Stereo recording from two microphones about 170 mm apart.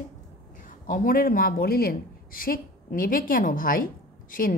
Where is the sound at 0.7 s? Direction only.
55° left (ahead or behind).